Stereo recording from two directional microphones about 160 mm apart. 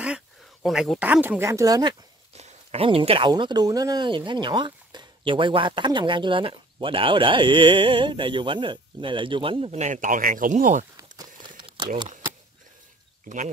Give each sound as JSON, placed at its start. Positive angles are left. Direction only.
{"t": 0.0, "sound": "speech", "side_deg": -5}
{"t": 2.3, "sound": "speech", "side_deg": -40}
{"t": 11.0, "sound": "crumpling", "side_deg": -25}